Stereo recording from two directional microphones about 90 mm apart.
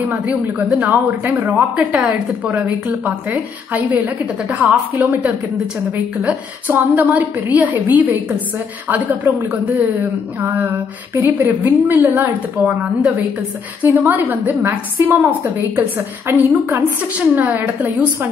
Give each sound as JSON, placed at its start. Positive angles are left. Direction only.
{"t": 0.1, "sound": "a woman's voice", "side_deg": -15}
{"t": 6.7, "sound": "a woman's voice", "side_deg": -20}